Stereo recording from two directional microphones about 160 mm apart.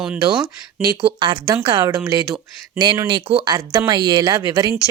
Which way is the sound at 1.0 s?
30° right (ahead or behind).